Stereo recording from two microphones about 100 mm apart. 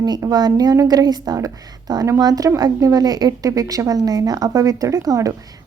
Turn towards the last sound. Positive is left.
turn(degrees=-35)  # may be behind; listen again after turning